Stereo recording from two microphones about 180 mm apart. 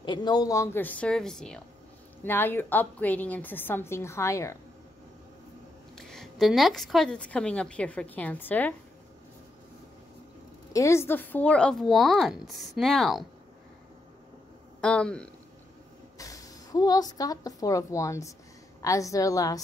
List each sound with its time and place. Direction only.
0.0 s a woman's voice: 25° left (ahead or behind)
5.9 s a woman's voice: 5° left (ahead or behind)
10.7 s a woman's voice: 15° left (ahead or behind); by 13.3 s centre (ahead or behind)
14.8 s a woman's voice: 5° left (ahead or behind)
16.2 s a woman's voice: 20° left (ahead or behind)